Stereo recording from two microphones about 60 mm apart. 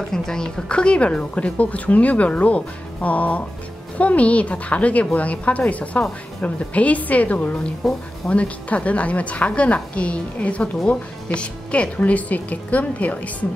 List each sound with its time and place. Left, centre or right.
0.1 s speech: centre